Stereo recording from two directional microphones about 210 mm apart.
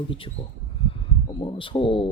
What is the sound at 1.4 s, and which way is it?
Speech, 25° left (ahead or behind).